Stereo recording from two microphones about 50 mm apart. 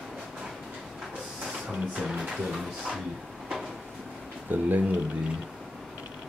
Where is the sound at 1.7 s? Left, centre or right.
Centre.